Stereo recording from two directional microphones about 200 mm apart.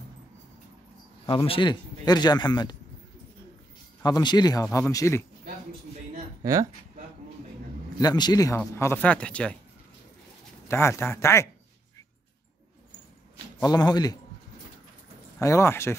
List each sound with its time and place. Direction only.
1.2 s a man's voice: 25° left (ahead or behind)
4.0 s a man's voice: 20° left (ahead or behind)
6.4 s speech: 15° right (ahead or behind)
8.0 s speech: 20° left (ahead or behind)
10.7 s speech: 10° left (ahead or behind)
13.6 s a man's voice: 20° left (ahead or behind)
15.3 s speech: 15° left (ahead or behind)